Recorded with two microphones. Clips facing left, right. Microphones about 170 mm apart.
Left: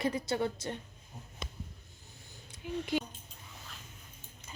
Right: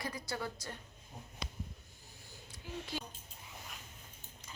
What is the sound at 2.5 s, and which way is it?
Speech, 20° left (ahead or behind).